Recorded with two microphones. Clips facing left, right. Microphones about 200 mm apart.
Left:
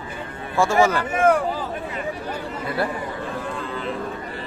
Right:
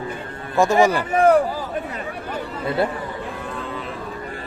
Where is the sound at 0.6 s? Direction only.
15° right (ahead or behind).